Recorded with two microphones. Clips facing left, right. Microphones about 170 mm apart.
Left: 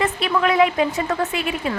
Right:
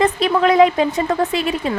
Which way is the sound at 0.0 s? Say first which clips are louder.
Right 5 dB; 40° right (ahead or behind).